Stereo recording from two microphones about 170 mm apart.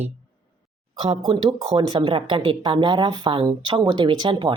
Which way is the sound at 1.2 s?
25° right (ahead or behind).